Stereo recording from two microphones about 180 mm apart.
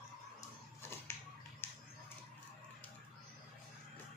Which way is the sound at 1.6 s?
10° left (ahead or behind).